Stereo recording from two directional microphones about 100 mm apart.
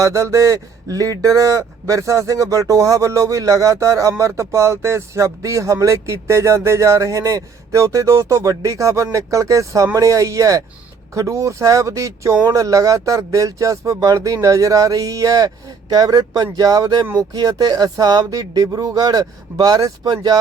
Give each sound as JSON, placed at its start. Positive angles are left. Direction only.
{"t": 0.0, "sound": "speech", "side_deg": -30}